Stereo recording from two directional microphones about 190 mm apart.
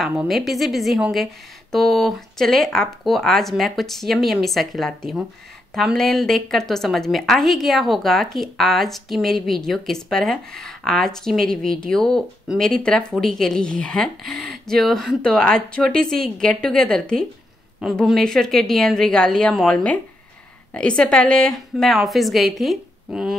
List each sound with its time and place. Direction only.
0.0 s speech: 5° right (ahead or behind)